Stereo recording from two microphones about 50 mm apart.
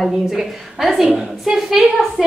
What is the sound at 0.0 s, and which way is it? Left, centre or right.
A woman's voice, centre.